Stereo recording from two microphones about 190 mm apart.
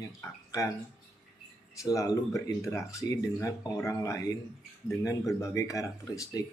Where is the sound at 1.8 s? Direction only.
20° left (ahead or behind).